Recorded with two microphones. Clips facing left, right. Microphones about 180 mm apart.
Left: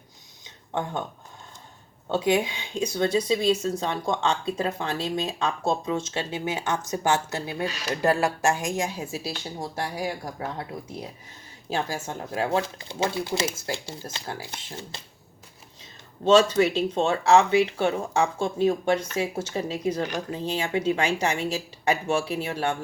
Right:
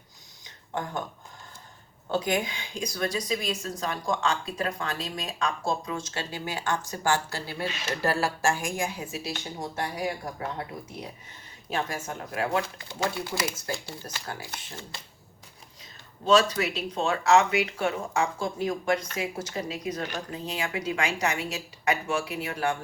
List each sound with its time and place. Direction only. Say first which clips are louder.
0.4 s a sound: left 3 dB; 25° left (ahead or behind)
2.0 s speech: left 4 dB; 25° left (ahead or behind)
11.7 s speech: left 2 dB; 30° left (ahead or behind)